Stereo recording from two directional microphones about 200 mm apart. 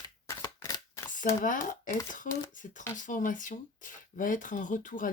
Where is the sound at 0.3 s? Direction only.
15° left (ahead or behind).